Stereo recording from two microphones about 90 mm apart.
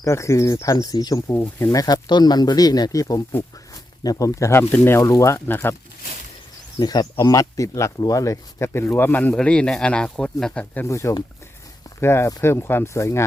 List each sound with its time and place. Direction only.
0.0 s speech: 35° left (ahead or behind)
2.0 s speech: 50° left (ahead or behind); by 5.4 s 35° left (ahead or behind)
5.5 s speech: 25° left (ahead or behind)
6.7 s speech: 50° left (ahead or behind); by 10.8 s 10° left (ahead or behind)
10.8 s speech: 35° left (ahead or behind)